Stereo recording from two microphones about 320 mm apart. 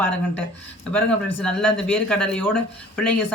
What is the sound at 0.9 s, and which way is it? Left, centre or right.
Speech, centre.